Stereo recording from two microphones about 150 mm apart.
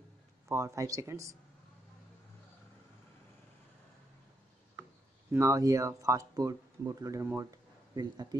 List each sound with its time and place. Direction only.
0.5 s speech: 20° right (ahead or behind)
5.3 s speech: 20° right (ahead or behind)